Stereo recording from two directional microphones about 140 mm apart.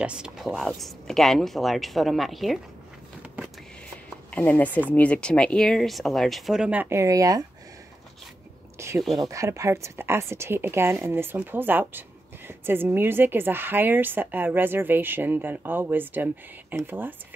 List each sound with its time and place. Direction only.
0.0 s speech: 5° right (ahead or behind)
4.3 s speech: 10° left (ahead or behind); by 7.4 s 25° right (ahead or behind)
8.7 s a sound: 20° right (ahead or behind)
9.2 s a woman's voice: 20° right (ahead or behind)